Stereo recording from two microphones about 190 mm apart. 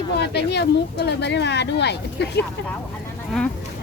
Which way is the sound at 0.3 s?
60° left (ahead or behind).